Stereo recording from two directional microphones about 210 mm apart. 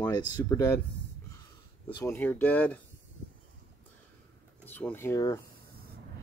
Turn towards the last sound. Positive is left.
turn(degrees=15)  # may be behind; listen again after turning